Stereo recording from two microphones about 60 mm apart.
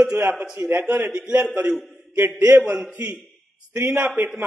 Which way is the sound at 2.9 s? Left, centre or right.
Right.